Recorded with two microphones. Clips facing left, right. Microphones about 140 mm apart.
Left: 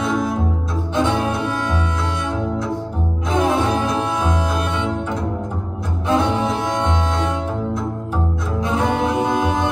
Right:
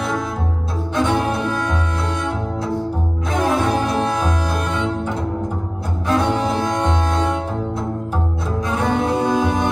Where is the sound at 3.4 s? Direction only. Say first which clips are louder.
Left 1 dB; 20° left (ahead or behind).